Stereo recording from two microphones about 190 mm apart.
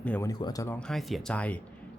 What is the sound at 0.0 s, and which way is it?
Speech, 10° left (ahead or behind).